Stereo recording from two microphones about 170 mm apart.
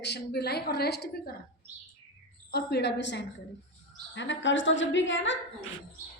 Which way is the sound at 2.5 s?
80° left.